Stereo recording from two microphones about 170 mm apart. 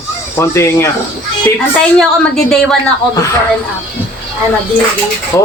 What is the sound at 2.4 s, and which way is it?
Speech, centre (ahead or behind).